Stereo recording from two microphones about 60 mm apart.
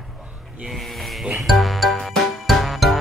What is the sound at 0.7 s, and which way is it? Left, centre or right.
Speech, centre.